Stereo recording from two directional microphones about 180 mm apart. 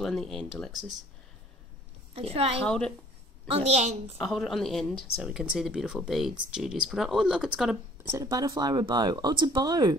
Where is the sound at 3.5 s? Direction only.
35° right (ahead or behind).